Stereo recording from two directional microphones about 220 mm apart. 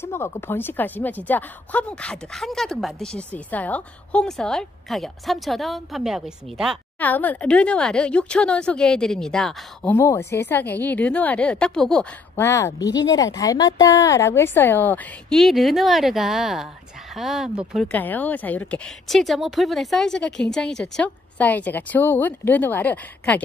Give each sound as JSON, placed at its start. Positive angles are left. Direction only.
{"t": 0.0, "sound": "a woman's voice", "side_deg": 10}